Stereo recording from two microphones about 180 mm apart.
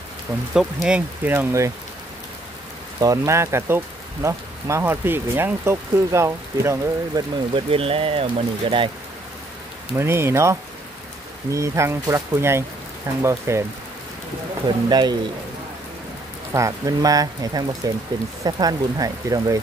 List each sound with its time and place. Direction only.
0.6 s speech: 5° right (ahead or behind)
3.0 s speech: 15° right (ahead or behind)
9.9 s speech: 15° right (ahead or behind)
14.9 s speech: 25° right (ahead or behind)
16.5 s speech: 20° right (ahead or behind)